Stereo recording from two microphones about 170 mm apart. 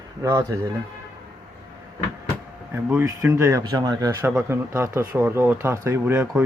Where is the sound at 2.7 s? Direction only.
15° right (ahead or behind).